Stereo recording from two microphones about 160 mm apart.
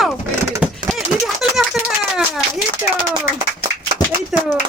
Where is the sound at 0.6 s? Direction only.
5° right (ahead or behind).